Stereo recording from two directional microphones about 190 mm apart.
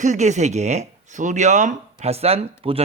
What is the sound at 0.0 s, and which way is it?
Speech, 40° right (ahead or behind).